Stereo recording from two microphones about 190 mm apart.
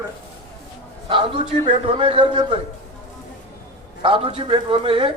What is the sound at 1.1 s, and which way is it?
A man's voice, 25° right (ahead or behind).